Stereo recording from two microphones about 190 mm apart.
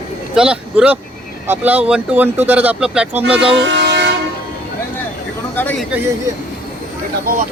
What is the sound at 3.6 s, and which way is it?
Toot, 65° right (ahead or behind).